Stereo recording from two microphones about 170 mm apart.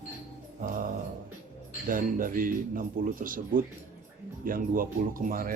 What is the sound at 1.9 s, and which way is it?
Speech, 55° right (ahead or behind).